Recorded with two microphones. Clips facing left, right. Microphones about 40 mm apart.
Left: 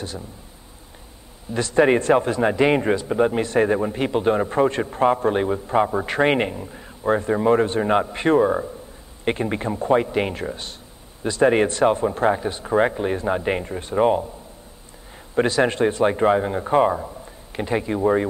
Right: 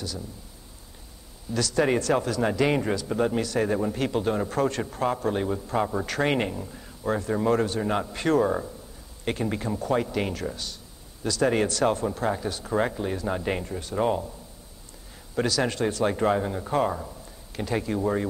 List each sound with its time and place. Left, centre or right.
1.5 s a man's voice: left
15.3 s a man's voice: left